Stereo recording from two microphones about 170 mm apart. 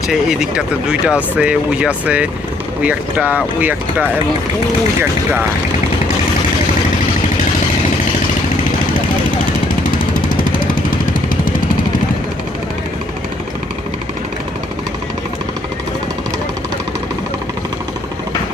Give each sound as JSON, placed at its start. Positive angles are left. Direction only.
{"t": 0.1, "sound": "speech", "side_deg": -5}
{"t": 10.2, "sound": "vehicle", "side_deg": 55}